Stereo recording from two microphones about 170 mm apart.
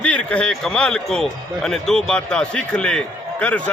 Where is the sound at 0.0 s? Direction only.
5° left (ahead or behind).